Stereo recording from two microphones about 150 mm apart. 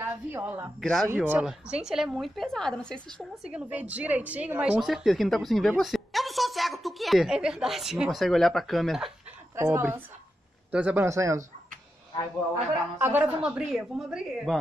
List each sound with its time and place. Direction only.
0.0 s a woman's voice: 15° right (ahead or behind)
0.7 s a woman's voice: centre (ahead or behind)
9.6 s a woman's voice: 15° right (ahead or behind)
11.1 s speech: 20° right (ahead or behind)
13.0 s a woman's voice: 10° right (ahead or behind)